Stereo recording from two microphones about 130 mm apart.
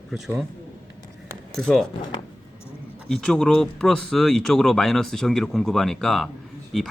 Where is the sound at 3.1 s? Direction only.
5° left (ahead or behind).